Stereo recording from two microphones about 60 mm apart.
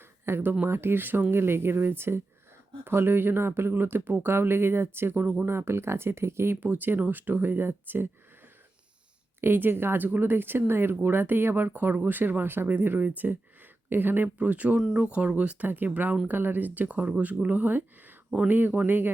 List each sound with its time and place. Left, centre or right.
0.0 s a sound: right
0.6 s speech: right
6.6 s speech: right
9.4 s speech: right